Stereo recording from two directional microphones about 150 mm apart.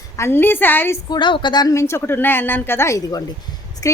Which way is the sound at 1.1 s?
30° left (ahead or behind).